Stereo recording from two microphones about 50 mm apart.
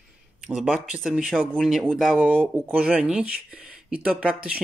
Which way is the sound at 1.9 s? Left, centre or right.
Centre.